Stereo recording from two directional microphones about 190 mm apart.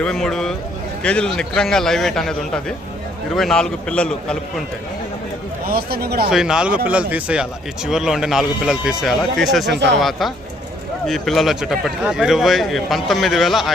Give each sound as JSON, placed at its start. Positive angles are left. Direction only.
{"t": 0.0, "sound": "speech", "side_deg": 5}
{"t": 5.6, "sound": "speech", "side_deg": -55}
{"t": 6.3, "sound": "speech", "side_deg": -5}
{"t": 9.7, "sound": "speech", "side_deg": -65}
{"t": 10.0, "sound": "speech", "side_deg": 0}